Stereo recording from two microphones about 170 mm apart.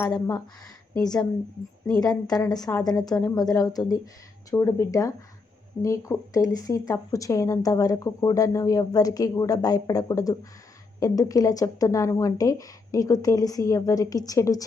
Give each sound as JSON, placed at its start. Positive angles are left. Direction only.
{"t": 0.0, "sound": "speech", "side_deg": 20}